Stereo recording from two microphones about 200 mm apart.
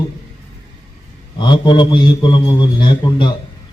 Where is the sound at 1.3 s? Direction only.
20° left (ahead or behind).